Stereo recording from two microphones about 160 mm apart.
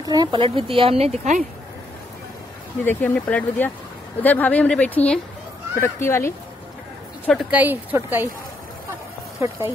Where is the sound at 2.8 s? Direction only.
10° left (ahead or behind).